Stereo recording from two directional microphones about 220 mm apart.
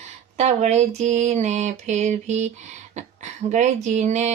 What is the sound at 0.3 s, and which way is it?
Speech, 30° right (ahead or behind).